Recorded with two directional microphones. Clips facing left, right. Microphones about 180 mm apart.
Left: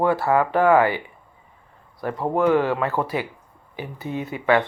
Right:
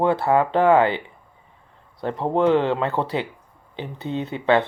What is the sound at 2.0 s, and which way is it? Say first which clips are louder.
Speech: right 1 dB; 25° right (ahead or behind).